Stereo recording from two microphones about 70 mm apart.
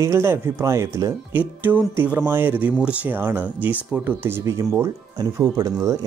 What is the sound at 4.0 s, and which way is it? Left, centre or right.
Speech, right.